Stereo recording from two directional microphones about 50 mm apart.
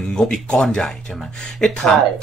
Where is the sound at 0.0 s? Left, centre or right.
Centre.